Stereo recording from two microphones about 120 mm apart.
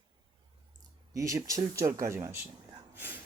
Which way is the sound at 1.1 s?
25° right (ahead or behind).